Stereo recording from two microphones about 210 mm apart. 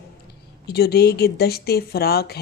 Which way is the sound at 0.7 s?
50° left (ahead or behind).